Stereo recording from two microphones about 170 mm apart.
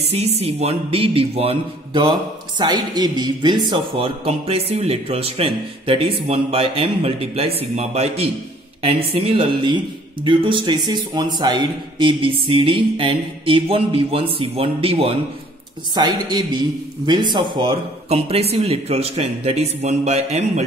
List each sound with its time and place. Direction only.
0.0 s speech: 40° right (ahead or behind)